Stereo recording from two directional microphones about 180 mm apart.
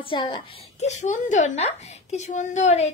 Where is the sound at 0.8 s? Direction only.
40° left (ahead or behind).